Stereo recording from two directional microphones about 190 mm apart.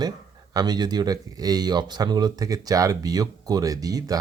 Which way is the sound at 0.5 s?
20° right (ahead or behind).